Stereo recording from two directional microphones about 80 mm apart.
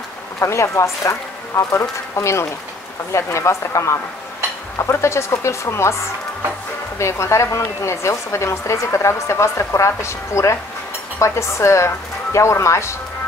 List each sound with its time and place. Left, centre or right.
0.4 s speech: left
7.0 s speech: left